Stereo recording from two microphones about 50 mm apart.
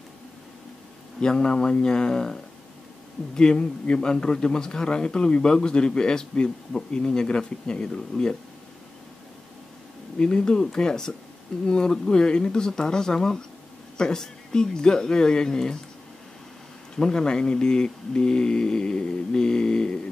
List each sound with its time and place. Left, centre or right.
1.2 s a man's voice: centre
10.1 s a man's voice: centre
16.9 s a man's voice: centre